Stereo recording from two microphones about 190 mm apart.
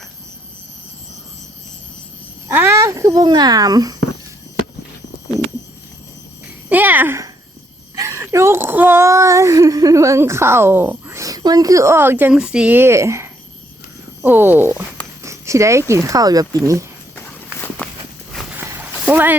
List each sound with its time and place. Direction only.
2.5 s speech: 15° right (ahead or behind)
6.7 s a sound: 10° right (ahead or behind)
7.9 s speech: 15° right (ahead or behind)
15.2 s a sound: 15° right (ahead or behind)
15.9 s speech: 15° right (ahead or behind)
17.2 s walk: 10° left (ahead or behind)
19.0 s speech: 10° right (ahead or behind)